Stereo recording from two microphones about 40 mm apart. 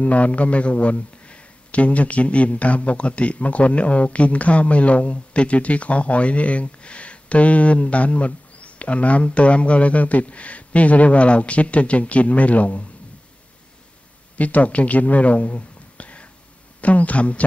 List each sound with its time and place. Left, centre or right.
0.0 s a man's voice: left
14.3 s a man's voice: left